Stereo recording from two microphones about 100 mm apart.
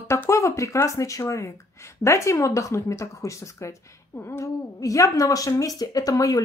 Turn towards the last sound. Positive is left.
turn(degrees=35)  # may be behind; listen again after turning